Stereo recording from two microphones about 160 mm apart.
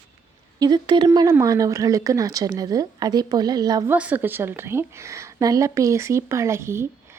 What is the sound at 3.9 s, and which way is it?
Speech, 10° right (ahead or behind).